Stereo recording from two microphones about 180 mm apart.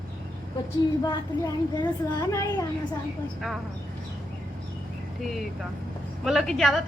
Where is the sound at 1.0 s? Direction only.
20° left (ahead or behind).